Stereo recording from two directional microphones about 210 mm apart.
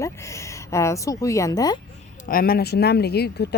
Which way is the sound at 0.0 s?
15° left (ahead or behind).